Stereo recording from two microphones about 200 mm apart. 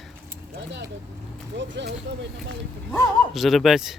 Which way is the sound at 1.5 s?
65° right (ahead or behind).